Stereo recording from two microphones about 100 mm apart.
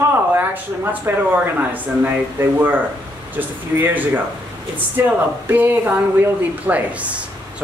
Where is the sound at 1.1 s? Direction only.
20° right (ahead or behind).